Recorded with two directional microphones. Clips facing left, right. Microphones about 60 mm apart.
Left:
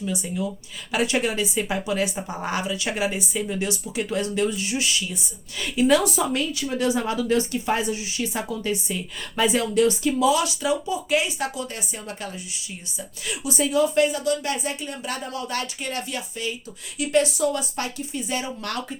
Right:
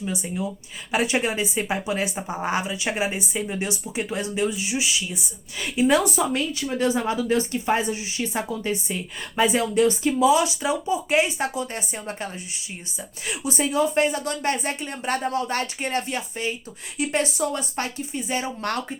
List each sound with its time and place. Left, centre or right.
0.0 s a woman's voice: right